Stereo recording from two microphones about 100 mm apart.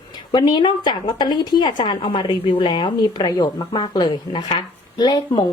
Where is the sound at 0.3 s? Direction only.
45° left (ahead or behind).